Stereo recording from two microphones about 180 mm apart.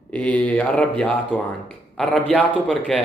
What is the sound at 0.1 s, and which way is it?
A man's voice, 5° left (ahead or behind).